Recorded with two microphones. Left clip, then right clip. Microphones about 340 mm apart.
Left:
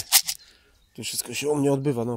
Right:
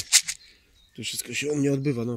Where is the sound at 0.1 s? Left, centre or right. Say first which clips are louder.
Even; left.